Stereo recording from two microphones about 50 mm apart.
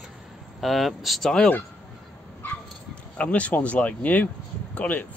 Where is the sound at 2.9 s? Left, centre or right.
Left.